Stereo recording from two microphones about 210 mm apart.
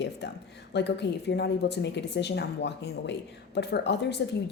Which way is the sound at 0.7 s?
55° left (ahead or behind).